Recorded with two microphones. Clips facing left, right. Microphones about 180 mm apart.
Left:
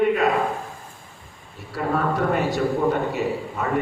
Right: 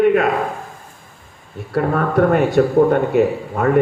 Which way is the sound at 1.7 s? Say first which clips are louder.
Right 6 dB; 55° right (ahead or behind).